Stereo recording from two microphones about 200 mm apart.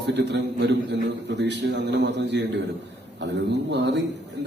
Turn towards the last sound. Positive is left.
turn(degrees=-60)  # may be behind; listen again after turning